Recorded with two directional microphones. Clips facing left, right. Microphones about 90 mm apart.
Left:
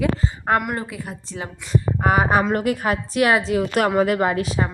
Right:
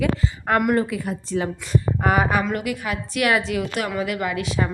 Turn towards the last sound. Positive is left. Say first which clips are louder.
# left 3 dB
turn(degrees=40)  # may be behind; listen again after turning